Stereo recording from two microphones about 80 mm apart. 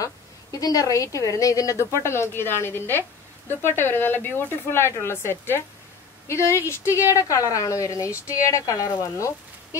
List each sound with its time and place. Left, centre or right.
0.0 s a woman's voice: left